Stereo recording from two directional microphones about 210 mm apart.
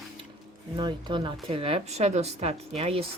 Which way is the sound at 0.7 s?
20° right (ahead or behind).